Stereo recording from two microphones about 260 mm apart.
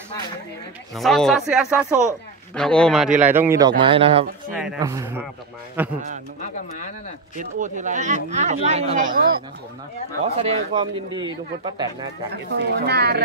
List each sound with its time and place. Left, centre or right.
0.9 s a man's voice: centre
7.3 s speech: right
10.3 s a man's voice: right
12.5 s speech: right